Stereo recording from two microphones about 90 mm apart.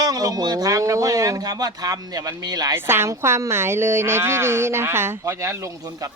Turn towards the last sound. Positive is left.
turn(degrees=-35)  # may be behind; listen again after turning